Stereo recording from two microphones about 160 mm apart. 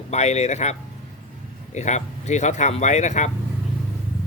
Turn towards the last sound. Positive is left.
turn(degrees=45)  # may be behind; listen again after turning